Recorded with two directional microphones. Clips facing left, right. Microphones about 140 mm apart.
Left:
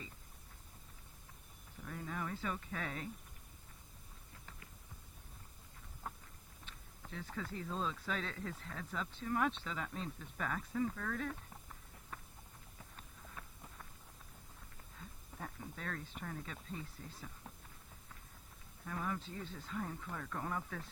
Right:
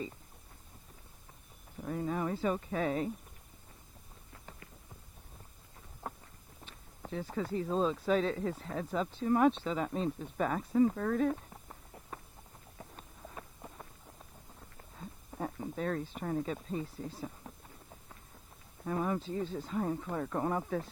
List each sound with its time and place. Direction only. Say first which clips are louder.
1.8 s speech: right 9 dB; 30° right (ahead or behind)
6.7 s speech: right 10 dB; 35° right (ahead or behind)
13.0 s a sound: right 5 dB; 30° right (ahead or behind)
14.9 s speech: right 9 dB; 30° right (ahead or behind)
18.9 s speech: right 8 dB; 30° right (ahead or behind)